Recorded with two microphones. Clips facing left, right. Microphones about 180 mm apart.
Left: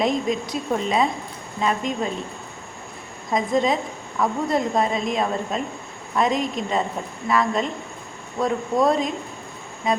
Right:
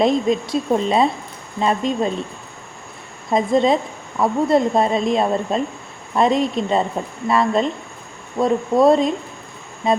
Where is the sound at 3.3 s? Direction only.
25° right (ahead or behind).